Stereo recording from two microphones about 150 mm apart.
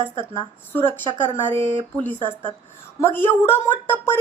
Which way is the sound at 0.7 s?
15° left (ahead or behind).